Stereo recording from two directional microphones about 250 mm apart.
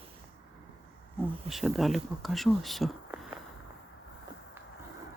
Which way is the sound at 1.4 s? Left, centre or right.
Centre.